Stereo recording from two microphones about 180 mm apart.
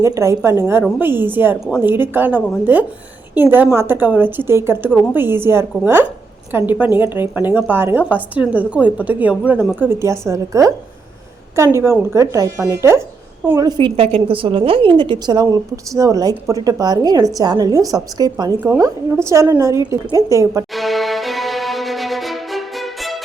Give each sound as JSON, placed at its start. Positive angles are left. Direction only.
{"t": 0.0, "sound": "a woman's voice", "side_deg": -15}
{"t": 20.7, "sound": "music", "side_deg": 0}